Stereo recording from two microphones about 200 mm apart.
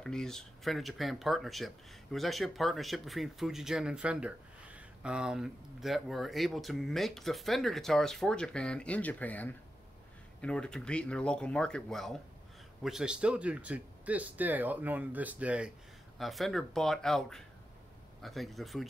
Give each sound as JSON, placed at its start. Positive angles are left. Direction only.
{"t": 0.0, "sound": "speech", "side_deg": 5}